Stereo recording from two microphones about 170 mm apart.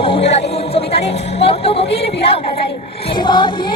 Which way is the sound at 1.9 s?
35° left (ahead or behind).